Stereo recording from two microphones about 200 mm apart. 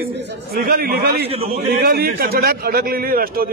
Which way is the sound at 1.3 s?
30° right (ahead or behind).